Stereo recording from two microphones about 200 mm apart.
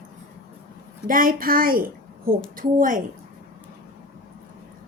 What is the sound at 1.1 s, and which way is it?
A woman's voice, 45° right (ahead or behind).